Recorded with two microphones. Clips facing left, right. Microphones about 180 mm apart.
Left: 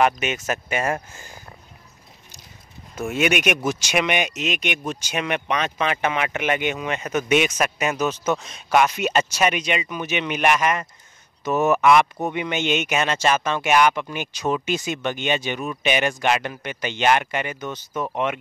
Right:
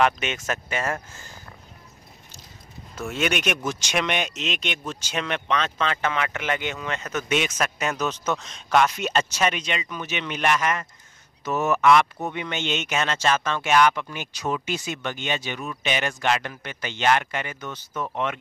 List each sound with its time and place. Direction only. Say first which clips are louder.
0.0 s speech: left 2 dB; 5° left (ahead or behind)
3.0 s speech: left 4 dB; 10° left (ahead or behind)